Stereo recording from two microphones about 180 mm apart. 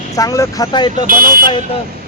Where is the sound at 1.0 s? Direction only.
55° right (ahead or behind).